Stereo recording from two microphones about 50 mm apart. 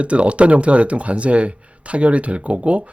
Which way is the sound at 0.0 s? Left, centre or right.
Right.